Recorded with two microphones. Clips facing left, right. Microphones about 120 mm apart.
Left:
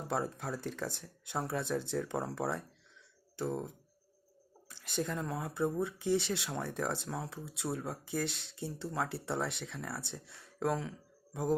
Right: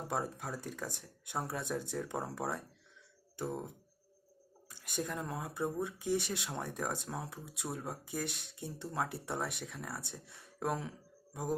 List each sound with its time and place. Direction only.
0.1 s speech: 15° right (ahead or behind)
4.9 s speech: 10° right (ahead or behind)